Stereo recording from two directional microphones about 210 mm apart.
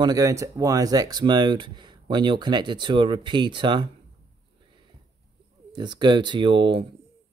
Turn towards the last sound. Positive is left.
turn(degrees=-25)  # may be behind; listen again after turning